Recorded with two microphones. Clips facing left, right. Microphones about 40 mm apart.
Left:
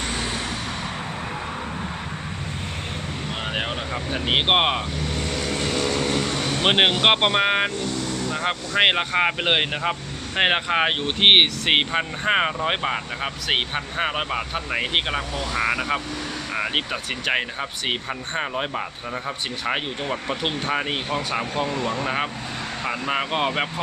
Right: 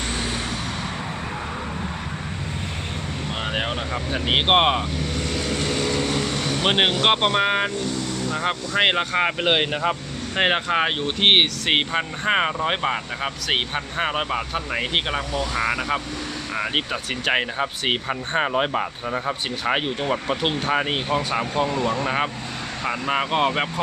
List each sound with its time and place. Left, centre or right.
3.4 s speech: centre
5.3 s vehicle: centre
6.5 s speech: centre
17.6 s speech: centre